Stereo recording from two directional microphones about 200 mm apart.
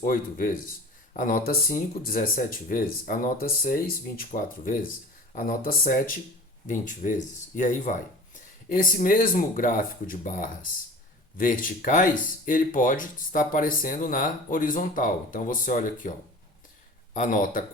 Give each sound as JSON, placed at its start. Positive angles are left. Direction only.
{"t": 0.0, "sound": "speech", "side_deg": 45}
{"t": 17.2, "sound": "speech", "side_deg": 40}